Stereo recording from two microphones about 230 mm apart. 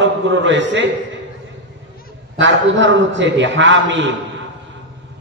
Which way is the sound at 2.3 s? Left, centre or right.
Right.